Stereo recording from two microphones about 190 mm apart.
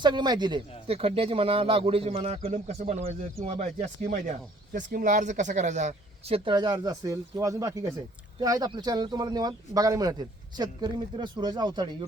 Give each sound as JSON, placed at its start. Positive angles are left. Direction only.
{"t": 0.0, "sound": "speech", "side_deg": -25}